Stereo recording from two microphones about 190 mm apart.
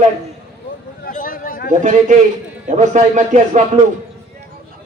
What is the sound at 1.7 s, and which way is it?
Speech, 40° right (ahead or behind).